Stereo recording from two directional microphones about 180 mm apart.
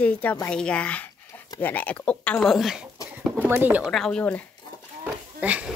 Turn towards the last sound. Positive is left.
turn(degrees=-10)  # may be behind; listen again after turning